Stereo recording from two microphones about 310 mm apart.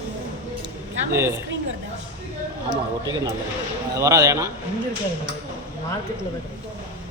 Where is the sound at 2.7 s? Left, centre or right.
Centre.